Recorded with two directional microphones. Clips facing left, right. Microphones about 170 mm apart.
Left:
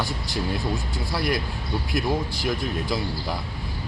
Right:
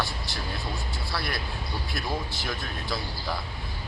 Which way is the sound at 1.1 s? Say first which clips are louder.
Left 8 dB; 15° left (ahead or behind).